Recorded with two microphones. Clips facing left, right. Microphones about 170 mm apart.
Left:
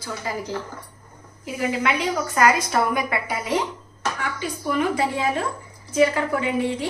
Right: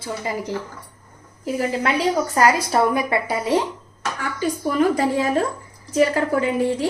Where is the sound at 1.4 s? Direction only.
35° right (ahead or behind).